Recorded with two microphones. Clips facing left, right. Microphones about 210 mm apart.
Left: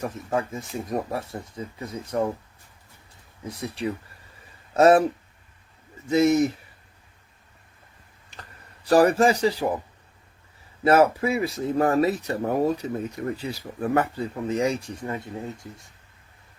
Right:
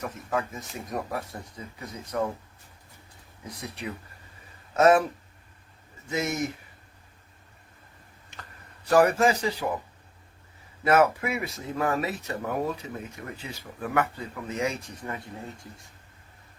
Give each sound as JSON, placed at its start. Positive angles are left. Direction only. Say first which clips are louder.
{"t": 0.0, "sound": "speech", "louder": "left 3 dB", "side_deg": 30}
{"t": 3.4, "sound": "speech", "louder": "left 7 dB", "side_deg": 30}
{"t": 6.1, "sound": "speech", "louder": "left 10 dB", "side_deg": 35}
{"t": 8.3, "sound": "a sound", "louder": "left 2 dB", "side_deg": 35}
{"t": 10.8, "sound": "speech", "louder": "left 4 dB", "side_deg": 30}